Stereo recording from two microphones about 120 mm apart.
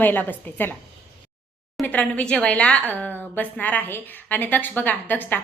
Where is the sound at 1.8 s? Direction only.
15° left (ahead or behind).